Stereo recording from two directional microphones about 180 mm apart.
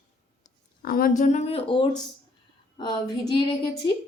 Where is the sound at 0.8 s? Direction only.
50° left (ahead or behind); by 3.7 s 25° left (ahead or behind).